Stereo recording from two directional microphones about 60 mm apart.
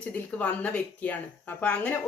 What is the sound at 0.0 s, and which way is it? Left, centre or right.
Speech, left.